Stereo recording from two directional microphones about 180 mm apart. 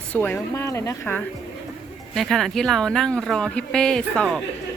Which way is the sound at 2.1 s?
Centre (ahead or behind).